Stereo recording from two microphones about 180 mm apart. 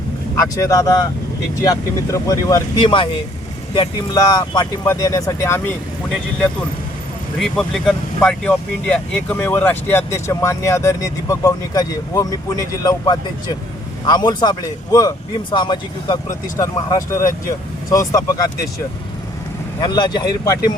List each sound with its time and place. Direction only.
0.3 s speech: 20° left (ahead or behind)
2.1 s speech: 20° left (ahead or behind)
7.3 s speech: 5° left (ahead or behind); by 18.4 s 20° left (ahead or behind)
19.8 s speech: 25° left (ahead or behind)